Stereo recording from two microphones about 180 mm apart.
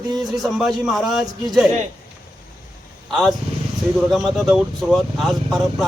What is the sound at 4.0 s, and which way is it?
Speech, centre (ahead or behind).